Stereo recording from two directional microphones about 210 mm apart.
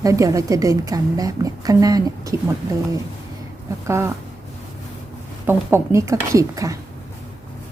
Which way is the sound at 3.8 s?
15° right (ahead or behind).